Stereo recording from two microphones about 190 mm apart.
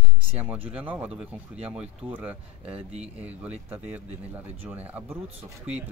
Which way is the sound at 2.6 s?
30° right (ahead or behind).